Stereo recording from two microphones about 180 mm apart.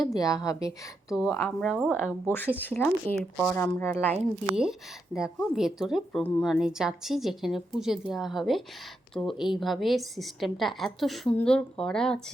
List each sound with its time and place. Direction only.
0.0 s a woman's voice: 20° left (ahead or behind)
1.6 s speech: 5° right (ahead or behind)
2.6 s speech: 10° left (ahead or behind)
4.1 s a woman's voice: 5° right (ahead or behind)